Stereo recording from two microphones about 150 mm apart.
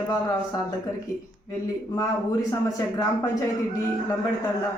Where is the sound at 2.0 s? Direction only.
25° left (ahead or behind).